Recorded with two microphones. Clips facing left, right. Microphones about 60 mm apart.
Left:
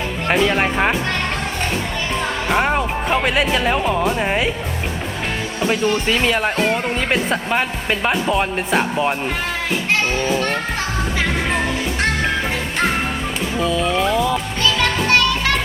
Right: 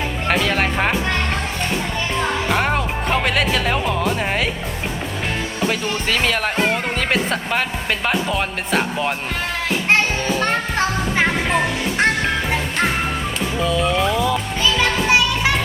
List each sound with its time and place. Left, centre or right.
0.3 s speech: centre
2.5 s speech: centre
5.5 s speech: centre
13.6 s speech: centre
14.6 s music: centre